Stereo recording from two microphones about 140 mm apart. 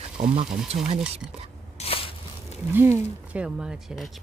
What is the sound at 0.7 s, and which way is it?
Speech, 65° right (ahead or behind).